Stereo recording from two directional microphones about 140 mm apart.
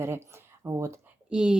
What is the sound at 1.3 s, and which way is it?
Speech, 5° right (ahead or behind).